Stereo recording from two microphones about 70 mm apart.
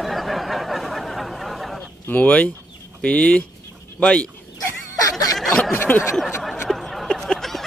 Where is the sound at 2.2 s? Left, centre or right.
Centre.